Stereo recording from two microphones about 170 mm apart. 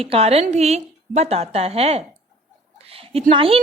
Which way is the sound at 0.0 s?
35° right (ahead or behind).